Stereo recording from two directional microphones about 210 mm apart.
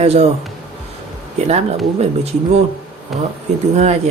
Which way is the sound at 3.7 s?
30° right (ahead or behind).